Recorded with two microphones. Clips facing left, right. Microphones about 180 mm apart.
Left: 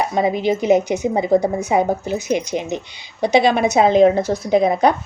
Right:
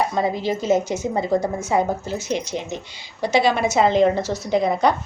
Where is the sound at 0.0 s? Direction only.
15° left (ahead or behind).